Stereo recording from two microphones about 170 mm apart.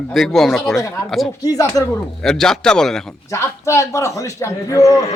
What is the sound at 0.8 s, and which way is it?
Speech, 15° left (ahead or behind).